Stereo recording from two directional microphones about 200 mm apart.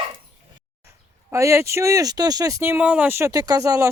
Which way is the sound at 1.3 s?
15° right (ahead or behind).